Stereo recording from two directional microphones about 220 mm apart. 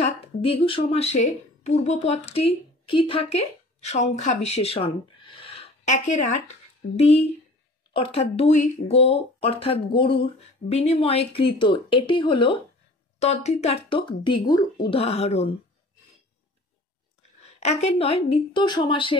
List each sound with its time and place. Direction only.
0.0 s a woman's voice: 25° left (ahead or behind)
7.9 s speech: 25° left (ahead or behind)
17.6 s speech: 30° left (ahead or behind)